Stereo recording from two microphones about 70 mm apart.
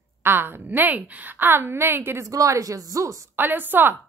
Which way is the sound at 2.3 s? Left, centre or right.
Right.